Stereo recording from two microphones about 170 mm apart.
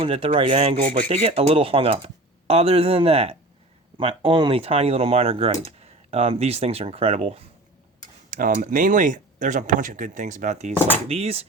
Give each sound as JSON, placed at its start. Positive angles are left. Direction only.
{"t": 0.0, "sound": "speech", "side_deg": -35}
{"t": 8.3, "sound": "speech", "side_deg": -50}